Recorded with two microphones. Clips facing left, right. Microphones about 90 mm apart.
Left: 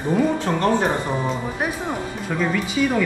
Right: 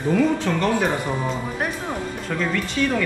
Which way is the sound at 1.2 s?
5° left (ahead or behind).